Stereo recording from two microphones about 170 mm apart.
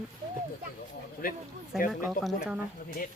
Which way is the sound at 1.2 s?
55° left (ahead or behind).